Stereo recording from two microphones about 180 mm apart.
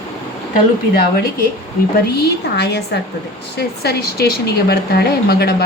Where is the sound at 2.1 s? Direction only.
70° left (ahead or behind).